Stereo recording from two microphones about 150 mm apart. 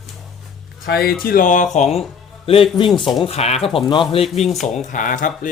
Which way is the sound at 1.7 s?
45° left (ahead or behind).